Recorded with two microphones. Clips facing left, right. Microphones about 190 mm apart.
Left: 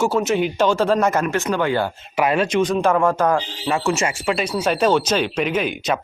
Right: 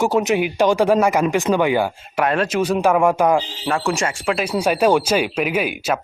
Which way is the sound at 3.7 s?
5° left (ahead or behind).